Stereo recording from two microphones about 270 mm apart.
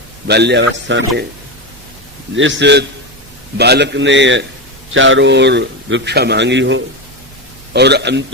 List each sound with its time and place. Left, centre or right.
0.3 s a man's voice: right
2.3 s a man's voice: right